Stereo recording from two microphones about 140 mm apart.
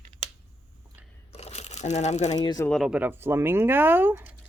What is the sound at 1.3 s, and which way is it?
Crumpling, 50° left (ahead or behind).